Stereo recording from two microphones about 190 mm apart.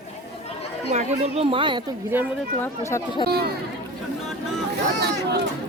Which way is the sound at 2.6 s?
15° left (ahead or behind).